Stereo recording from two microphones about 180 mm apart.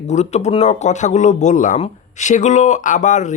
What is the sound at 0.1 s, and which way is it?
Speech, 40° left (ahead or behind).